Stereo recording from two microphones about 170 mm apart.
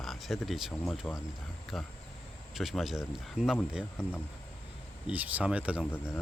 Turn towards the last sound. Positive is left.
turn(degrees=15)  # may be behind; listen again after turning